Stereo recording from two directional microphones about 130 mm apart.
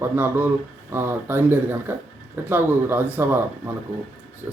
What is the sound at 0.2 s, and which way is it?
Speech, 15° right (ahead or behind).